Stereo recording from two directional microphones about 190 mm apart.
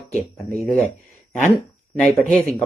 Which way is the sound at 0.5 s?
5° left (ahead or behind).